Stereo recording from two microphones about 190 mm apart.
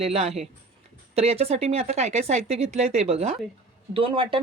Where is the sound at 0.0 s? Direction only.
35° right (ahead or behind).